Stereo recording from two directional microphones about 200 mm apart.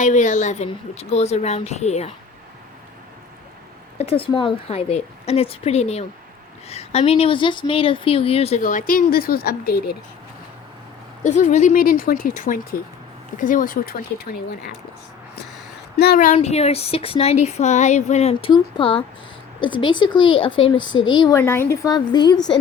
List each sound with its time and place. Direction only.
0.0 s speech: 40° left (ahead or behind)
3.9 s speech: 30° left (ahead or behind); by 9.9 s 50° left (ahead or behind)
11.2 s speech: 35° left (ahead or behind)
16.0 s speech: 45° left (ahead or behind); by 22.5 s 20° left (ahead or behind)